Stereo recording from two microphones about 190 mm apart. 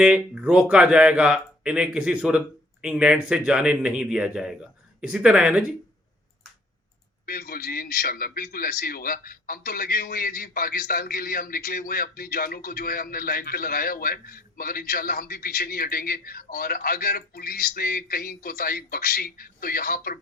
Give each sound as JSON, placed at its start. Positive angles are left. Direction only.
{"t": 0.0, "sound": "speech", "side_deg": -5}
{"t": 7.3, "sound": "a man's voice", "side_deg": 50}